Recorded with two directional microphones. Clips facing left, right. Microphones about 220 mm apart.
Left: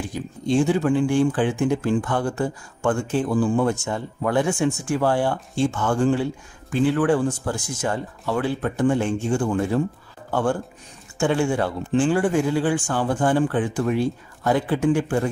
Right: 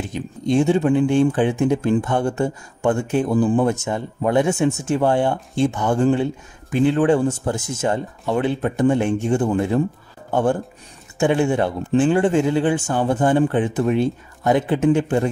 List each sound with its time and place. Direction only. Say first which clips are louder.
0.1 s speech: right 2 dB; 20° right (ahead or behind)